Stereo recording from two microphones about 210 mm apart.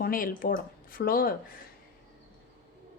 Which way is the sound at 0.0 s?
40° left (ahead or behind).